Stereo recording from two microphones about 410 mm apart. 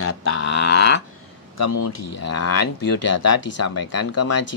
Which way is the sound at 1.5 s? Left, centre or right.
Left.